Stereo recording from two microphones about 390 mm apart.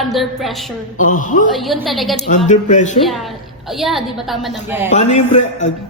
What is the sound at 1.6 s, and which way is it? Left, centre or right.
Speech, centre.